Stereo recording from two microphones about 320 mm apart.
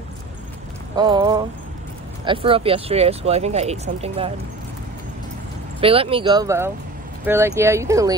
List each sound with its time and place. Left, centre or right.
0.9 s speech: centre
5.8 s speech: centre